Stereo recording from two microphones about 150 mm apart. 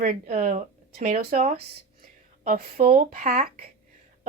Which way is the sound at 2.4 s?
70° right (ahead or behind).